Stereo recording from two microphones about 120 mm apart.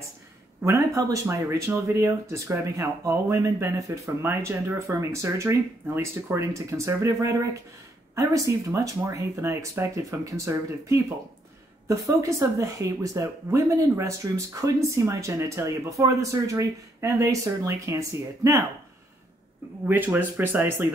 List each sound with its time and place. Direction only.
0.6 s speech: 25° right (ahead or behind)
19.9 s speech: 15° right (ahead or behind)